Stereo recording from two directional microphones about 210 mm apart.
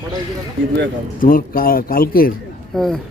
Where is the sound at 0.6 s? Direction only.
65° right (ahead or behind).